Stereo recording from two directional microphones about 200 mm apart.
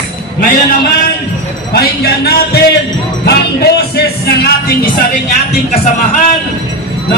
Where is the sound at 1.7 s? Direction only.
55° left (ahead or behind).